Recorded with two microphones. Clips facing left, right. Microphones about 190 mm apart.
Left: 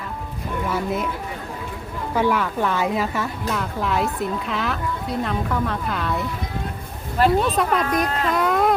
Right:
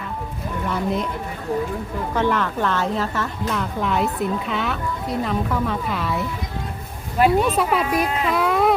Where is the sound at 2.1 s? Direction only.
10° left (ahead or behind).